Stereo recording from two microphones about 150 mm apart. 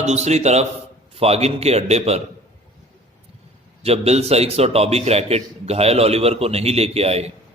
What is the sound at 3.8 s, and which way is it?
Speech, 45° right (ahead or behind).